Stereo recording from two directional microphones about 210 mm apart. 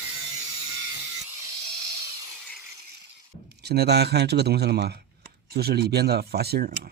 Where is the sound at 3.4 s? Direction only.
50° right (ahead or behind).